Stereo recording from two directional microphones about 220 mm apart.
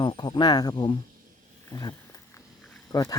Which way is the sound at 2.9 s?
20° left (ahead or behind).